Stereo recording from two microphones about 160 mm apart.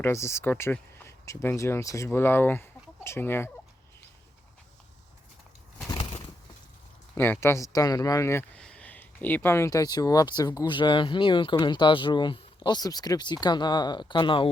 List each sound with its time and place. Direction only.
0.0 s speech: 15° left (ahead or behind)
5.9 s a sound: 35° left (ahead or behind)
7.2 s speech: 15° left (ahead or behind)
8.5 s speech: 5° left (ahead or behind); by 14.5 s 30° left (ahead or behind)